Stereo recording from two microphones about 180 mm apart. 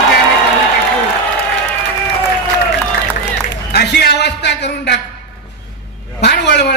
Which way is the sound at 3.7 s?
65° left (ahead or behind).